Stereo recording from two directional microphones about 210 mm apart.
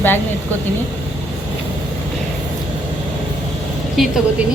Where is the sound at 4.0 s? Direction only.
Centre (ahead or behind).